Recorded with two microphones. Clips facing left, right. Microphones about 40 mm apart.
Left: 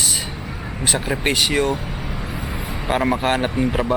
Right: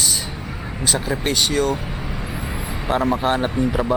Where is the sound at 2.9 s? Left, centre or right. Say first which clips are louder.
Even; centre.